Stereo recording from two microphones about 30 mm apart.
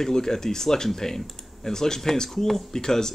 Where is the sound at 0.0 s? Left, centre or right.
Centre.